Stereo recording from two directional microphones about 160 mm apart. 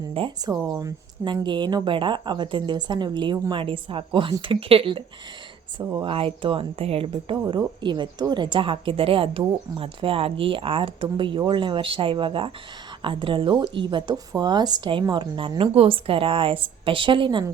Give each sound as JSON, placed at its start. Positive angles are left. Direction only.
{"t": 0.1, "sound": "speech", "side_deg": -35}
{"t": 0.5, "sound": "speech", "side_deg": -20}